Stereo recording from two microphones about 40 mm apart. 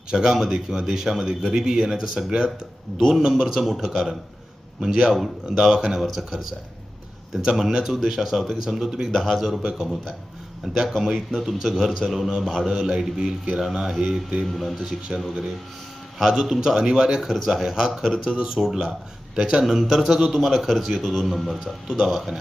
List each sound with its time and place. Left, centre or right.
0.1 s speech: centre
6.0 s a man's voice: centre
7.7 s speech: centre
9.6 s a man's voice: centre
10.8 s a man's voice: centre
14.4 s a man's voice: centre
15.1 s a man's voice: centre
17.3 s a man's voice: centre
17.6 s a man's voice: centre
19.6 s a man's voice: centre